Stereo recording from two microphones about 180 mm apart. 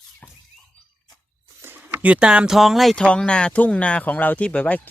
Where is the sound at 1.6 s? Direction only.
10° right (ahead or behind); by 4.8 s 10° left (ahead or behind).